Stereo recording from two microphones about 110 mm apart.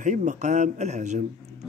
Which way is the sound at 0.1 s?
90° right.